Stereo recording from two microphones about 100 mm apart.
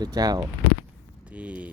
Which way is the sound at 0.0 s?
40° right (ahead or behind).